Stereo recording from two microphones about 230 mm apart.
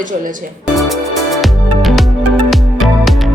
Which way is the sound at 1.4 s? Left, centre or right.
Centre.